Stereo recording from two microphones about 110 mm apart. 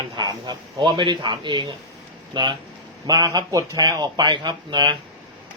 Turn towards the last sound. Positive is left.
turn(degrees=-40)  # may be behind; listen again after turning